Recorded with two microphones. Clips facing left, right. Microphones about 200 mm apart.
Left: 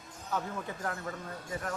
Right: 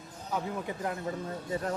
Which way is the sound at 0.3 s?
15° right (ahead or behind).